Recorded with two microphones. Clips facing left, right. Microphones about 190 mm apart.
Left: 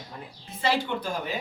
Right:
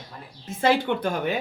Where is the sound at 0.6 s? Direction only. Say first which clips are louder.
Right 5 dB; 55° right (ahead or behind).